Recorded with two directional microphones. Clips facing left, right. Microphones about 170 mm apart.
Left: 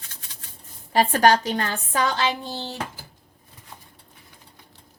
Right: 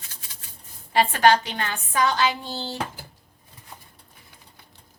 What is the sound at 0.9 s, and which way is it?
Speech, 40° left (ahead or behind).